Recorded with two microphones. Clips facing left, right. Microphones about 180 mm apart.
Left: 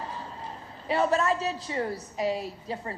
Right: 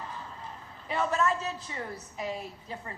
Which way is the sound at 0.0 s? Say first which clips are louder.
Left 4 dB; 35° left (ahead or behind).